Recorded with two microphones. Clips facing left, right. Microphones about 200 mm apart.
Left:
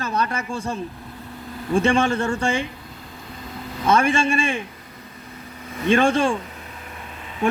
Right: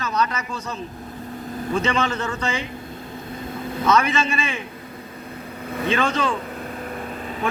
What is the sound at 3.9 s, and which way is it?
Speech, 50° left (ahead or behind).